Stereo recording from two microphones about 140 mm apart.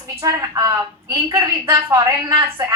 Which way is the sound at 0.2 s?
25° right (ahead or behind).